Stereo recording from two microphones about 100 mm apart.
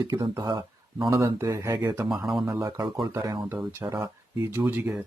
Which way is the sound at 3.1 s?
35° right (ahead or behind).